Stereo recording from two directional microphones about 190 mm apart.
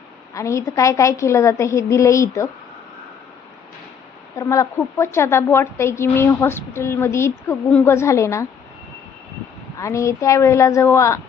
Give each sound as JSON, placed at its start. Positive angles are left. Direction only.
{"t": 0.3, "sound": "a woman's voice", "side_deg": 15}
{"t": 4.4, "sound": "a woman's voice", "side_deg": 15}
{"t": 9.7, "sound": "a woman's voice", "side_deg": 15}